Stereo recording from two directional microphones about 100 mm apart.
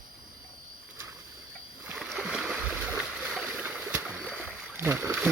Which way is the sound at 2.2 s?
5° right (ahead or behind).